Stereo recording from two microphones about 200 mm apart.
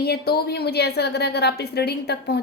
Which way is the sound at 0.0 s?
55° left (ahead or behind).